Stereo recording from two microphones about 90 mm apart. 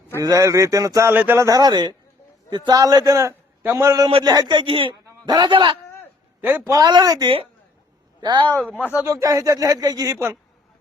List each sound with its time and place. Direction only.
0.2 s speech: 40° right (ahead or behind)
1.1 s speech: 20° right (ahead or behind)
1.5 s a man's voice: 45° right (ahead or behind); by 4.9 s 80° right
5.2 s speech: 50° right (ahead or behind)
6.7 s a man's voice: 45° right (ahead or behind)
8.2 s speech: 60° right (ahead or behind)
8.6 s speech: 15° left (ahead or behind)
9.0 s speech: 40° right (ahead or behind)